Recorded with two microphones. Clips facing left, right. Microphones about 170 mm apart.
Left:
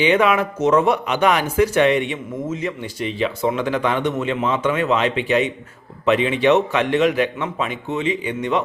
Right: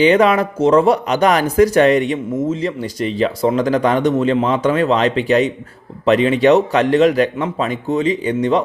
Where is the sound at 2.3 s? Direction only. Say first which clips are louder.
Right 3 dB; 30° right (ahead or behind).